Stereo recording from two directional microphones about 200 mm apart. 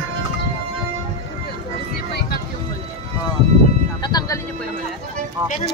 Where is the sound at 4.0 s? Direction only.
20° left (ahead or behind).